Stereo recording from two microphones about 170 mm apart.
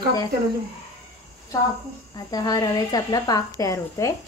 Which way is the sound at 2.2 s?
20° left (ahead or behind).